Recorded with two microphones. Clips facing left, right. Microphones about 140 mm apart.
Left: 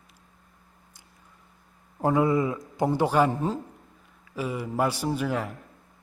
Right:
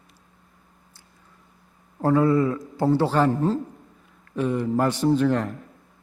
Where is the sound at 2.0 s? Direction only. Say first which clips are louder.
Right 3 dB; 15° left (ahead or behind).